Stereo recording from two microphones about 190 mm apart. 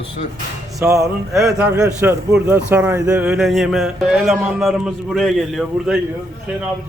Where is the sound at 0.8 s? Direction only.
15° right (ahead or behind).